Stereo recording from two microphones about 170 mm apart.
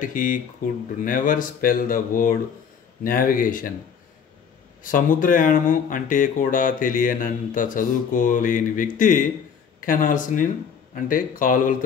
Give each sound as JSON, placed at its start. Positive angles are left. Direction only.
{"t": 0.0, "sound": "speech", "side_deg": 50}
{"t": 4.8, "sound": "speech", "side_deg": 50}